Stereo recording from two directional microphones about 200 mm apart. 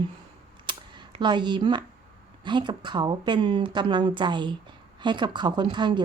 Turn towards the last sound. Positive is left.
turn(degrees=-25)  # may be behind; listen again after turning